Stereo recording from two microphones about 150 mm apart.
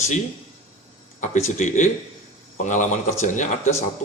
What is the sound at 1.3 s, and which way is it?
A man's voice, 55° left (ahead or behind).